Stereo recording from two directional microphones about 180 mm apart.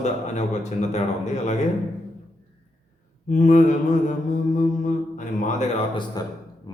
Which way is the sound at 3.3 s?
45° left (ahead or behind).